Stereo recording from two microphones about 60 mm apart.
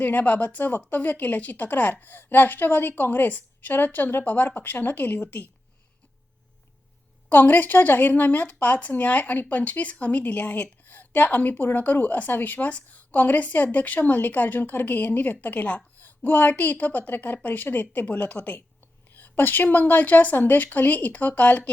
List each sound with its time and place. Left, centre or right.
0.0 s a woman's voice: left
7.3 s a woman's voice: left